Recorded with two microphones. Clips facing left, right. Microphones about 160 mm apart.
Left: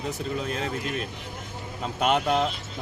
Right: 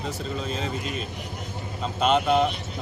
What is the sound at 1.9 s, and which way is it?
Speech, 10° left (ahead or behind).